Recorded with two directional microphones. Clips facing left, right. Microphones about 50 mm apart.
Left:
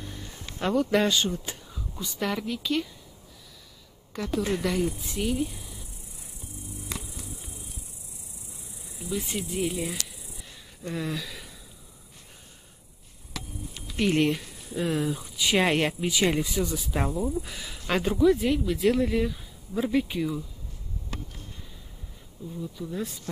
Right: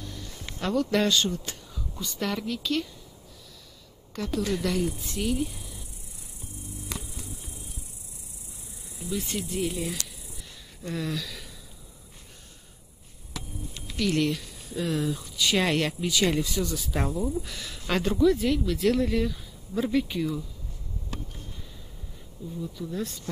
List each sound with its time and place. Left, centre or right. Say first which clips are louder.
0.0 s speech: even; left
4.1 s speech: left 1 dB; centre
4.4 s speech: left 1 dB; left
4.6 s speech: left 1 dB; centre
9.1 s speech: even; centre
10.8 s a sound: even; centre
13.9 s speech: left 2 dB; left; by 20.4 s centre
22.6 s speech: even; centre